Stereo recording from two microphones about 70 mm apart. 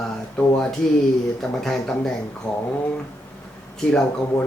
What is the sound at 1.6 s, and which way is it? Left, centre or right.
Speech, centre.